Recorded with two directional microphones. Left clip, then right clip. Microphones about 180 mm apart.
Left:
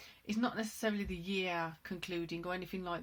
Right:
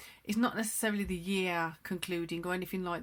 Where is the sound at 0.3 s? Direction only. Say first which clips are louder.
Right 4 dB; 45° right (ahead or behind).